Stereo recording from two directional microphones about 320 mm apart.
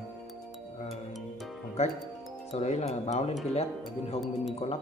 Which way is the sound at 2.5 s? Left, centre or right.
Centre.